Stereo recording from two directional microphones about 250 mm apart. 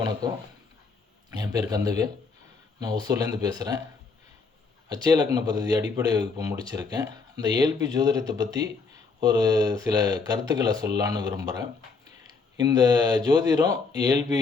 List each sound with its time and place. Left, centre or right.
0.2 s speech: centre
4.9 s speech: centre